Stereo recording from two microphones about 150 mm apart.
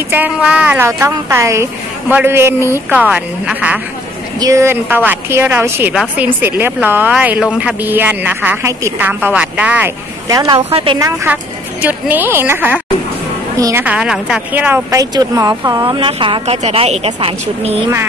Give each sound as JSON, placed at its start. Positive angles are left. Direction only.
{"t": 0.1, "sound": "a woman's voice", "side_deg": -10}
{"t": 4.4, "sound": "a woman's voice", "side_deg": -20}
{"t": 10.2, "sound": "speech", "side_deg": -25}
{"t": 10.7, "sound": "a woman's voice", "side_deg": -40}
{"t": 11.0, "sound": "a woman's voice", "side_deg": -20}
{"t": 13.8, "sound": "speech", "side_deg": -5}